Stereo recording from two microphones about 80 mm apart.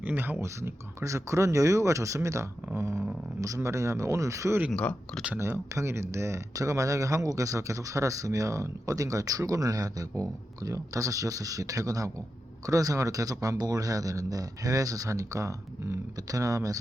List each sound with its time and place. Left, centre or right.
0.0 s speech: right
0.4 s speech: right
4.7 s speech: centre
5.4 s speech: right